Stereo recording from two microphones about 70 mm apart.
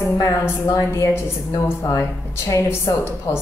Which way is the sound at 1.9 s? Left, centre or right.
Left.